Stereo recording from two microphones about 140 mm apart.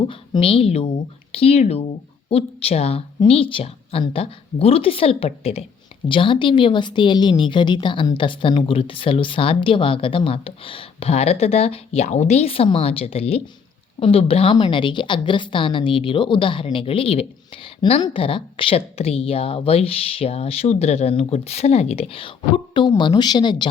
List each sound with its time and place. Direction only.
0.1 s a woman's voice: 40° left (ahead or behind)